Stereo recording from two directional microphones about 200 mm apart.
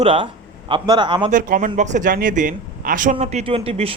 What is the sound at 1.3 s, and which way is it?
Speech, 40° right (ahead or behind).